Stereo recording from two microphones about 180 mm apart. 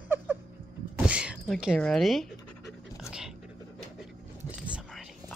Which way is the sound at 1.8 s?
Centre (ahead or behind).